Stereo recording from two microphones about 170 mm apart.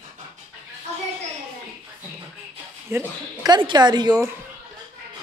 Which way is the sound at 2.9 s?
25° right (ahead or behind).